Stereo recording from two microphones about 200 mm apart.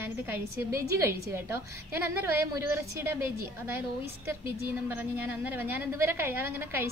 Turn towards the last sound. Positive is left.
turn(degrees=-10)  # may be behind; listen again after turning